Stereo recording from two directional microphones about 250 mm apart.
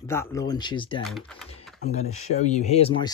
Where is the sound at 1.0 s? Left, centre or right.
Centre.